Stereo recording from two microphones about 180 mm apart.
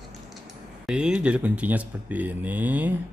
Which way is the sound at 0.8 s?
5° right (ahead or behind).